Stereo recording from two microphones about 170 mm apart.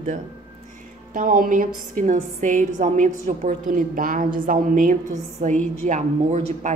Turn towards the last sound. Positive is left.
turn(degrees=-45)  # may be behind; listen again after turning